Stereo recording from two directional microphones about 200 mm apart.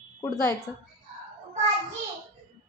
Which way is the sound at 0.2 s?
15° left (ahead or behind).